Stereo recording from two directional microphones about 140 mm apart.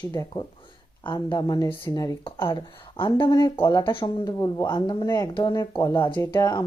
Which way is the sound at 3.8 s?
35° left (ahead or behind).